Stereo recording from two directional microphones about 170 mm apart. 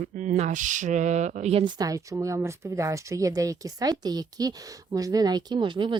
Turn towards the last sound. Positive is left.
turn(degrees=-30)  # may be behind; listen again after turning